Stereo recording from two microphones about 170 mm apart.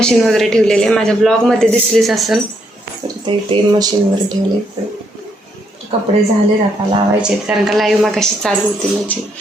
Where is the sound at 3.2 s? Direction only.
25° right (ahead or behind).